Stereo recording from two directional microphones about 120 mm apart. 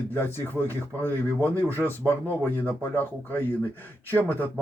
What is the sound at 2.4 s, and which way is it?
Speech, 15° left (ahead or behind).